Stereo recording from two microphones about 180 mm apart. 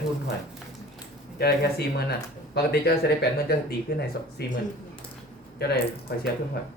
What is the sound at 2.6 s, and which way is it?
Speech, 60° left (ahead or behind).